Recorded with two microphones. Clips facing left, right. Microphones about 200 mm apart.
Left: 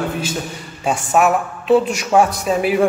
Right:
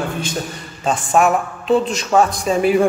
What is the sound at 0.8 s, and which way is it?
A man's voice, 5° left (ahead or behind).